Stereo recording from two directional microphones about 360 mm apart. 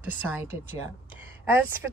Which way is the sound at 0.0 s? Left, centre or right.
Centre.